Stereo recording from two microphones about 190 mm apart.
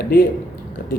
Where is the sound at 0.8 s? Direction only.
50° left (ahead or behind).